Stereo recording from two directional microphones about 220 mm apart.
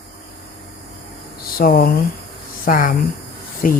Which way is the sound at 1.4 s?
40° left (ahead or behind).